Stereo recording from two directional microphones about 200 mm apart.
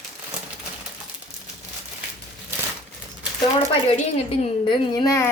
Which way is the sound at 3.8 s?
30° left (ahead or behind).